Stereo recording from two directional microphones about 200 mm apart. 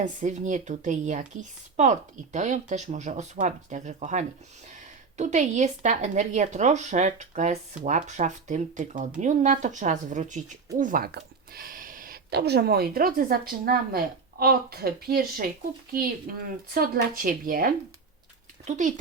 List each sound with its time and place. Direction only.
0.0 s speech: 40° right (ahead or behind)